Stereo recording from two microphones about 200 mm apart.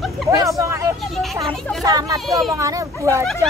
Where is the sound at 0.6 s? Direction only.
15° right (ahead or behind).